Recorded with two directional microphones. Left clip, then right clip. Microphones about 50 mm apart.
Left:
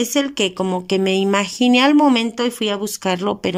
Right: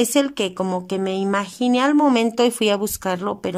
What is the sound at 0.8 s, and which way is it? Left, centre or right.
Speech, centre.